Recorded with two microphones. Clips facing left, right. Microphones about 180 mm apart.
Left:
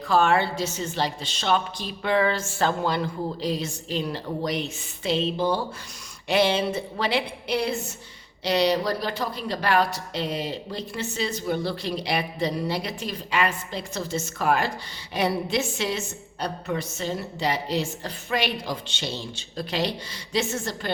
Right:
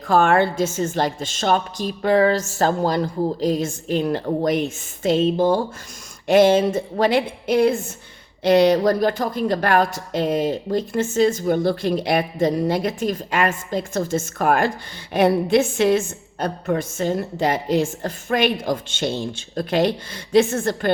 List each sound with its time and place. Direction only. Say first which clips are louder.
0.1 s a woman's voice: right 4 dB; 50° right (ahead or behind)